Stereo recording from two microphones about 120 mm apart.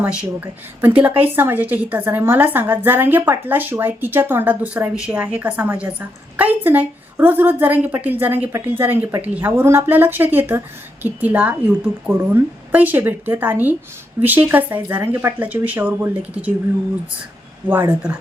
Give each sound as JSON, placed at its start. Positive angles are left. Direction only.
{"t": 0.2, "sound": "a woman's voice", "side_deg": -15}
{"t": 17.7, "sound": "speech", "side_deg": -20}